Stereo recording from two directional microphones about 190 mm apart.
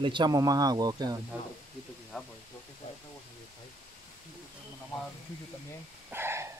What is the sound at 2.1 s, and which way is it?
Speech, 5° left (ahead or behind).